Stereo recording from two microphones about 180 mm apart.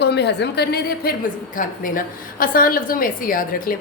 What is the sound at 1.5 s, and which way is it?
A woman's voice, 50° left (ahead or behind).